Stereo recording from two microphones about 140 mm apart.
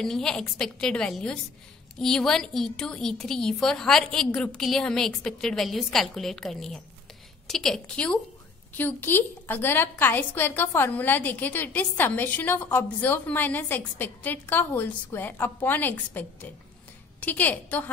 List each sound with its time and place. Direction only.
0.0 s a woman's voice: 5° left (ahead or behind)